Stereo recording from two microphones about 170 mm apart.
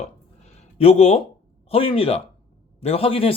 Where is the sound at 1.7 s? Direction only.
35° left (ahead or behind).